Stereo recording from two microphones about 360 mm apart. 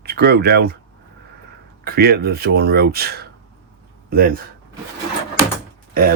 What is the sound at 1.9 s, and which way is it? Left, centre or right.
Speech, right.